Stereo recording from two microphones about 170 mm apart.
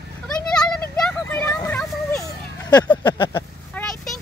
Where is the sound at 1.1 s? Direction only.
5° left (ahead or behind).